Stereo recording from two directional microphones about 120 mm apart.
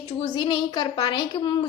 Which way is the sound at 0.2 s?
40° left (ahead or behind).